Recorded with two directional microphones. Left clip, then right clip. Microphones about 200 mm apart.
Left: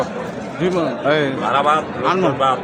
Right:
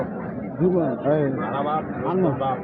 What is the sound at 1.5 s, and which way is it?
Speech, 20° left (ahead or behind).